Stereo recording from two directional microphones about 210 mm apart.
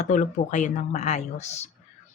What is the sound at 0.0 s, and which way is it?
Speech, 35° left (ahead or behind).